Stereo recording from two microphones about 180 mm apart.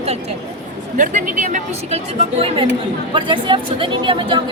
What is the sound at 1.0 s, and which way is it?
Speech, 45° right (ahead or behind).